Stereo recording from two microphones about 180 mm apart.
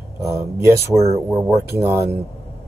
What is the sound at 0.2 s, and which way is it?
Speech, 15° right (ahead or behind).